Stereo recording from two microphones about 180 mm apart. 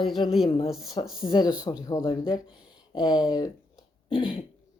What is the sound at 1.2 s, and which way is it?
Speech, 25° left (ahead or behind).